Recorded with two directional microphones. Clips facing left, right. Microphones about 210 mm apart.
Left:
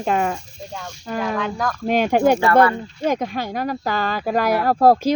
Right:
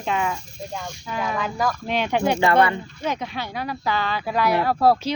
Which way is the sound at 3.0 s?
50° left (ahead or behind).